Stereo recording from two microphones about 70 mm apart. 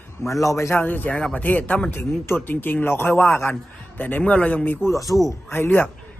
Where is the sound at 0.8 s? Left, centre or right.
Left.